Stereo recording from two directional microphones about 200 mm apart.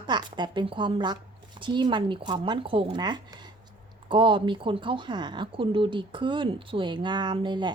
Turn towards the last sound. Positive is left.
turn(degrees=-25)  # may be behind; listen again after turning